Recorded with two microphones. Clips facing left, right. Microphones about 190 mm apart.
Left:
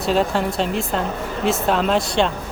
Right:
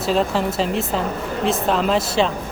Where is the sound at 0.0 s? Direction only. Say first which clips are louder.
Even; centre (ahead or behind).